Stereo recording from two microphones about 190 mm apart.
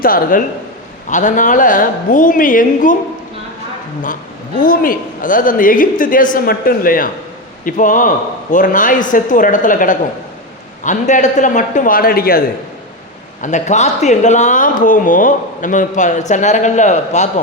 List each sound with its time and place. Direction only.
0.0 s a man's voice: 50° left (ahead or behind)
4.6 s a man's voice: 50° left (ahead or behind)
13.4 s speech: 40° left (ahead or behind)